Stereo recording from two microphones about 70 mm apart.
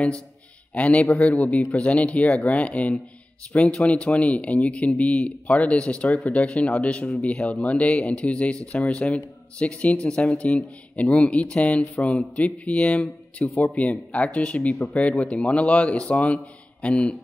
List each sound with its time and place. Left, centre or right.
0.7 s speech: centre